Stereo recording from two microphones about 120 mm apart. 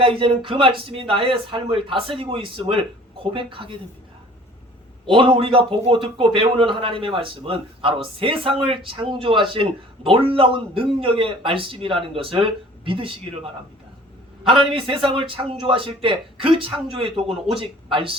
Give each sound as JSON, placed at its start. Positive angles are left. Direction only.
{"t": 0.0, "sound": "speech", "side_deg": -50}
{"t": 5.0, "sound": "speech", "side_deg": -50}
{"t": 14.4, "sound": "speech", "side_deg": -45}